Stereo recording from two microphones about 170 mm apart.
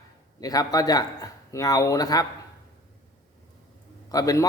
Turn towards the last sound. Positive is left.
turn(degrees=20)  # may be behind; listen again after turning